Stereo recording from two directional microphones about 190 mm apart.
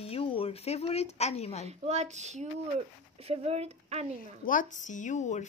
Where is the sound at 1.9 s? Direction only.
35° right (ahead or behind).